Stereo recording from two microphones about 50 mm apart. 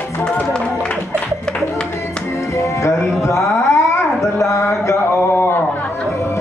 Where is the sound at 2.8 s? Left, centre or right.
Left.